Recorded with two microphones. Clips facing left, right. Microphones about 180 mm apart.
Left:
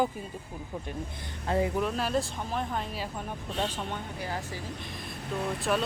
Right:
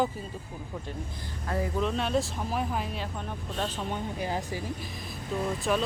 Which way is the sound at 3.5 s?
10° left (ahead or behind).